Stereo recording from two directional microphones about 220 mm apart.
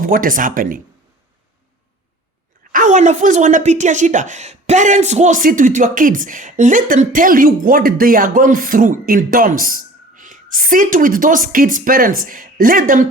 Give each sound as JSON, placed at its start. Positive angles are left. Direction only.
{"t": 0.0, "sound": "a woman's voice", "side_deg": -40}
{"t": 2.7, "sound": "a woman's voice", "side_deg": -35}